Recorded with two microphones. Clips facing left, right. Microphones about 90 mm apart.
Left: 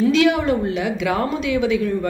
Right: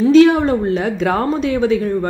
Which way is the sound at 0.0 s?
35° right (ahead or behind).